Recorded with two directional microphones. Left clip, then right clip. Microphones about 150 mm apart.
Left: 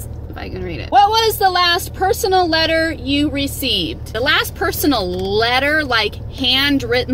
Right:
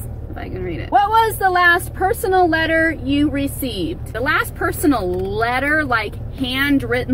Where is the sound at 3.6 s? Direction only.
30° left (ahead or behind).